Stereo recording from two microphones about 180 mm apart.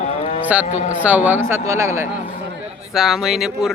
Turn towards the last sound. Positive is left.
turn(degrees=0)  # may be behind; listen again after turning